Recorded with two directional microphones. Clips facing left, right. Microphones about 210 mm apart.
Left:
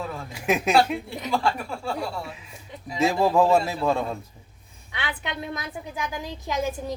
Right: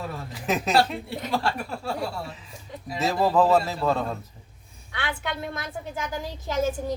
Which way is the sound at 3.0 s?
10° left (ahead or behind).